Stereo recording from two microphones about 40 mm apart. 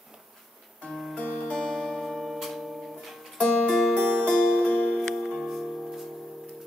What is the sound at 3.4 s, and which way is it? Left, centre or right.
Music, centre.